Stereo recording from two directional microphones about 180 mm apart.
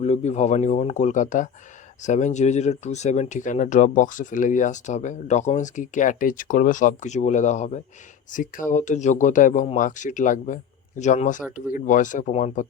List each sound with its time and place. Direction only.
0.0 s speech: 40° left (ahead or behind)